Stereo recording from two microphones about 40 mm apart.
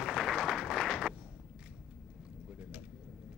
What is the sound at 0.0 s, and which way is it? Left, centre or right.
Music, centre.